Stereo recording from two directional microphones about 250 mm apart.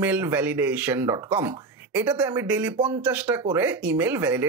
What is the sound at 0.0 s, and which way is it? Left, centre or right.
Speech, centre.